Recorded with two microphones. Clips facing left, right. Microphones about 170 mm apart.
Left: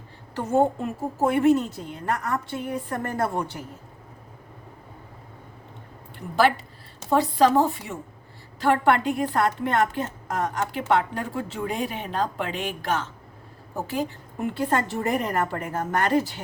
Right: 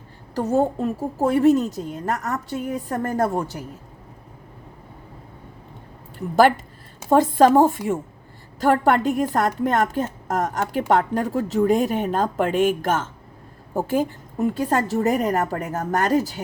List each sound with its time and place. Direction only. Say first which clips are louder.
0.3 s a woman's voice: right 2 dB; 35° right (ahead or behind)
7.1 s a woman's voice: right 5 dB; 45° right (ahead or behind)